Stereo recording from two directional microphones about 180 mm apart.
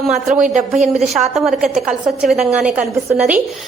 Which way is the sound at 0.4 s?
40° right (ahead or behind).